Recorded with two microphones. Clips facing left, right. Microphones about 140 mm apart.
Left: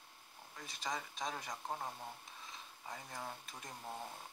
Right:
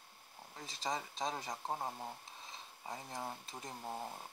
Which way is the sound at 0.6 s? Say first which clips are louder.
Right 3 dB; 30° right (ahead or behind).